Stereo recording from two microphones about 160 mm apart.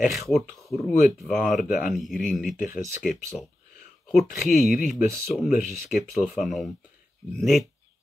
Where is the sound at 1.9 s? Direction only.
Centre (ahead or behind).